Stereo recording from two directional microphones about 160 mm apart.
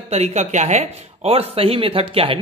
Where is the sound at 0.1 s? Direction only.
45° right (ahead or behind).